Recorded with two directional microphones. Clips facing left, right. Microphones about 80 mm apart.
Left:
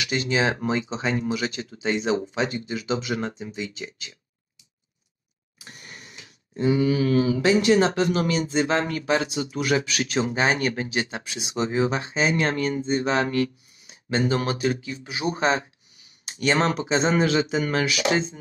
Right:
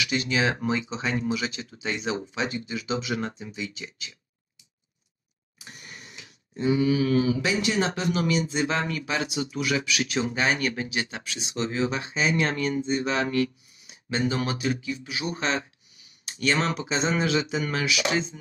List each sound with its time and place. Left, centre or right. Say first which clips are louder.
0.0 s speech: left 2 dB; left
6.1 s speech: left 4 dB; left
11.1 s speech: left 3 dB; left